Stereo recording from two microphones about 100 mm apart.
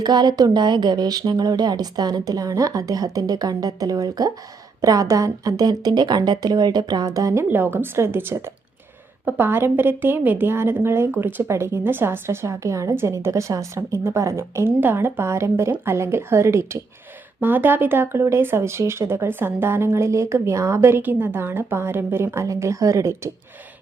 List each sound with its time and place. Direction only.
0.0 s speech: 45° right (ahead or behind)
7.5 s speech: 20° right (ahead or behind)